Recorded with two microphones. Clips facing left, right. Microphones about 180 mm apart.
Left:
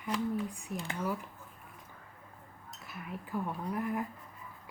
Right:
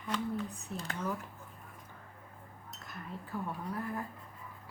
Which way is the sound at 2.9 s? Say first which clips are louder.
Left 2 dB; 10° left (ahead or behind).